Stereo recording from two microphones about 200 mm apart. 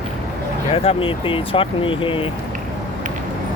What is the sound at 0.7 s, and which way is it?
Speech, 25° left (ahead or behind).